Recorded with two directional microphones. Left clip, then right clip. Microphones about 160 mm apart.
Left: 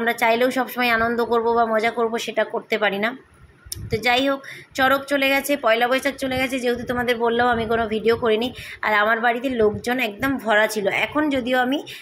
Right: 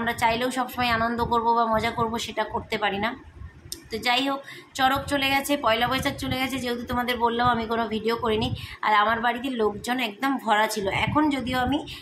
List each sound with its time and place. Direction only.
0.0 s a woman's voice: 30° left (ahead or behind)